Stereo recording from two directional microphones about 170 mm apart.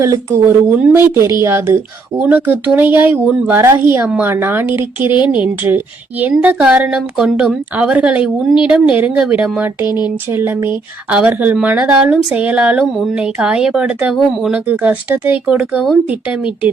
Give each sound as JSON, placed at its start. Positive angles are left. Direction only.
{"t": 0.0, "sound": "speech", "side_deg": -20}
{"t": 9.8, "sound": "speech", "side_deg": 25}
{"t": 10.2, "sound": "speech", "side_deg": -15}